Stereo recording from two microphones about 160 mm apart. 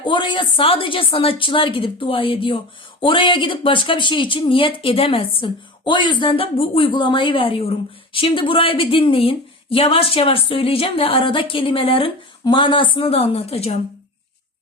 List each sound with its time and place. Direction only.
0.0 s speech: 30° left (ahead or behind)